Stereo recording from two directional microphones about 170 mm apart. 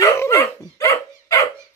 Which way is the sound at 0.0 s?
15° left (ahead or behind).